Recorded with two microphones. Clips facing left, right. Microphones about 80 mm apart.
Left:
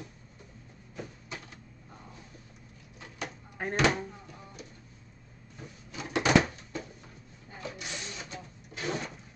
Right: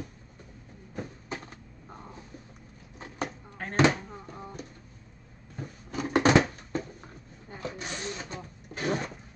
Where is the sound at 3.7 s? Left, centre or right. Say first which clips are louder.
Right 4 dB; right.